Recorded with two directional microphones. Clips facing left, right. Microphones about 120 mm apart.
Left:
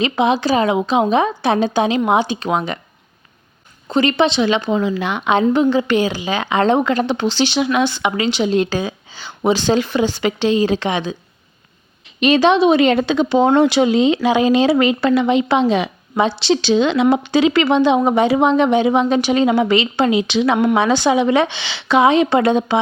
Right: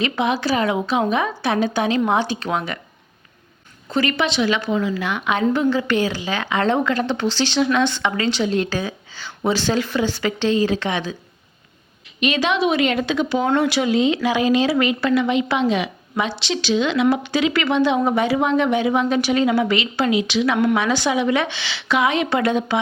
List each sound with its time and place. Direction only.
0.0 s a woman's voice: 20° left (ahead or behind)
3.8 s a woman's voice: 20° left (ahead or behind)
12.2 s a woman's voice: 35° left (ahead or behind)